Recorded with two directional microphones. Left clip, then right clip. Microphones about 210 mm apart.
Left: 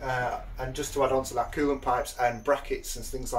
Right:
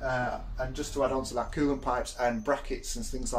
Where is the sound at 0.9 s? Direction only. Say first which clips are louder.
Left 3 dB; 15° right (ahead or behind).